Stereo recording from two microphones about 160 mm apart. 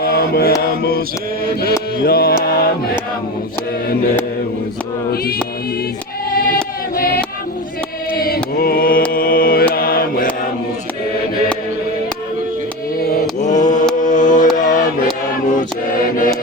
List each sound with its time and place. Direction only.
0.0 s mantra: 75° left (ahead or behind)
2.4 s choir: 75° left (ahead or behind)
6.9 s choir: 65° left (ahead or behind)
8.1 s mantra: 70° left (ahead or behind)
13.0 s mantra: 70° left (ahead or behind)
13.4 s mantra: 50° left (ahead or behind)
14.0 s music: 50° left (ahead or behind)
14.5 s a sound: 50° left (ahead or behind)